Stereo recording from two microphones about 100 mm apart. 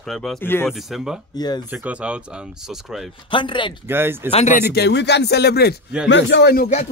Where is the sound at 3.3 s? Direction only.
55° left (ahead or behind).